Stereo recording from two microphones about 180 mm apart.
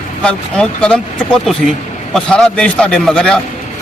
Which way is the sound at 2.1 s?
5° left (ahead or behind).